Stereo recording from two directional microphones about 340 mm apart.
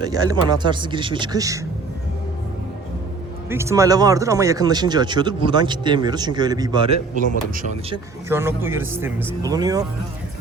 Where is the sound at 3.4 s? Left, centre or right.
Centre.